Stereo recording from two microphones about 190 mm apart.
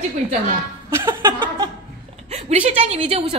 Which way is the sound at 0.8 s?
15° right (ahead or behind).